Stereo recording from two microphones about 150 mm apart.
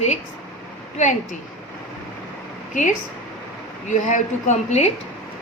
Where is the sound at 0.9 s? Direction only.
55° left (ahead or behind).